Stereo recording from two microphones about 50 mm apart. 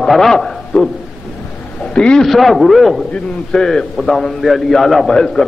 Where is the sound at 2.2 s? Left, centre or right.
Centre.